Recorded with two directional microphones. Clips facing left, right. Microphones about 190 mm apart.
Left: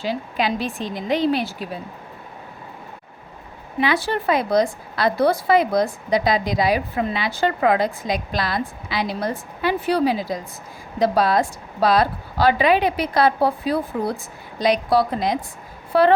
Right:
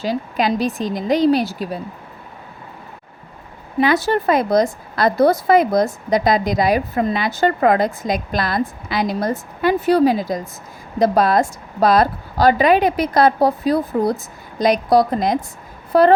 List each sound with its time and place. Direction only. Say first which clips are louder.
0.0 s a woman's voice: right 3 dB; 40° right (ahead or behind)
3.8 s a woman's voice: right 5 dB; 45° right (ahead or behind)